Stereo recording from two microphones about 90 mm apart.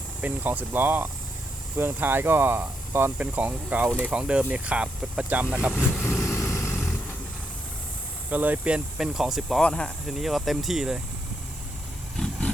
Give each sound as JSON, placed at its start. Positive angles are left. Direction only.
{"t": 0.2, "sound": "speech", "side_deg": -20}
{"t": 6.0, "sound": "vehicle", "side_deg": 25}
{"t": 8.3, "sound": "speech", "side_deg": -20}
{"t": 9.6, "sound": "speech", "side_deg": 10}
{"t": 10.1, "sound": "speech", "side_deg": 0}
{"t": 12.1, "sound": "roaring cats", "side_deg": 5}